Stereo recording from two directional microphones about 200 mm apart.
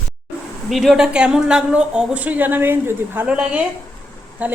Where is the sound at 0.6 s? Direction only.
Centre (ahead or behind).